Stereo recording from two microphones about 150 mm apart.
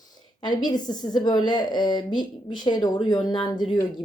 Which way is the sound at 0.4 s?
30° left (ahead or behind).